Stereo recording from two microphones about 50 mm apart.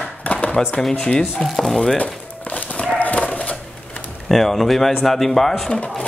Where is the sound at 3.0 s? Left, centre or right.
Left.